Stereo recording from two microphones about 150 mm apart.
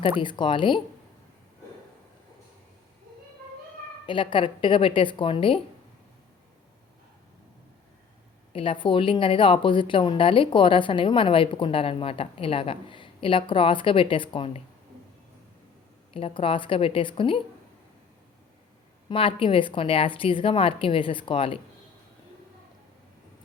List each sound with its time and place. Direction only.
0.2 s a woman's voice: 30° left (ahead or behind)
4.0 s a woman's voice: 35° left (ahead or behind)
8.5 s a woman's voice: 35° left (ahead or behind)
16.1 s a woman's voice: 35° left (ahead or behind)
19.0 s a woman's voice: 35° left (ahead or behind)